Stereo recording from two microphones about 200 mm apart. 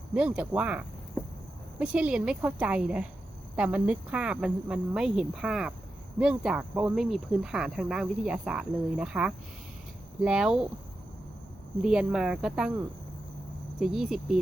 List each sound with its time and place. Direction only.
0.1 s speech: 5° right (ahead or behind)
11.8 s speech: 5° right (ahead or behind)
13.7 s speech: centre (ahead or behind)